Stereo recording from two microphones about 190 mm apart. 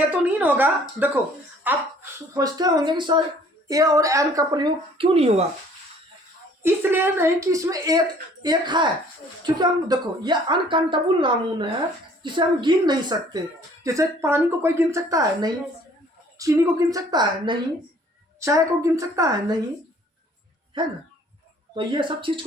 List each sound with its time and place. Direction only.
0.3 s speech: 10° right (ahead or behind); by 5.3 s 30° right (ahead or behind)
6.6 s a woman's voice: 10° right (ahead or behind)
21.8 s a woman's voice: 25° right (ahead or behind)